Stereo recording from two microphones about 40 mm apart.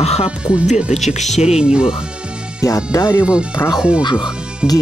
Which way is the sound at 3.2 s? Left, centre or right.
Right.